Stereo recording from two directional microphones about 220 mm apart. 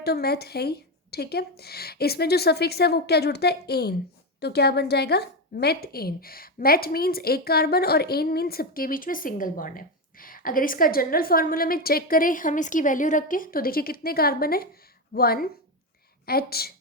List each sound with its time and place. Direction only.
0.0 s a woman's voice: 45° left (ahead or behind)